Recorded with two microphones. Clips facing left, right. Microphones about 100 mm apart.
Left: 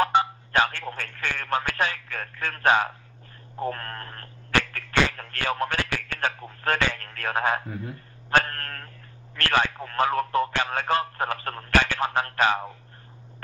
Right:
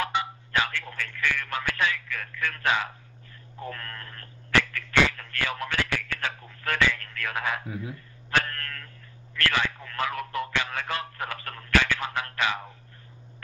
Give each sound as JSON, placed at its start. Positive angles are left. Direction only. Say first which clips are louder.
{"t": 0.0, "sound": "speech", "louder": "left 7 dB", "side_deg": 35}
{"t": 7.6, "sound": "a man's voice", "louder": "even", "side_deg": -5}
{"t": 7.9, "sound": "speech", "louder": "left 5 dB", "side_deg": 45}